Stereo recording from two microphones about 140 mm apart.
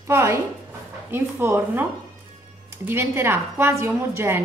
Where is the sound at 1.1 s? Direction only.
15° right (ahead or behind).